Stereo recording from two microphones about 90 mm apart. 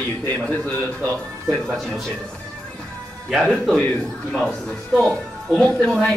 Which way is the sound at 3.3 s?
Centre (ahead or behind).